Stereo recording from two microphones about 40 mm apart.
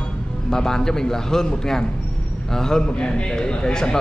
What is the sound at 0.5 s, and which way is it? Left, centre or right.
Speech, centre.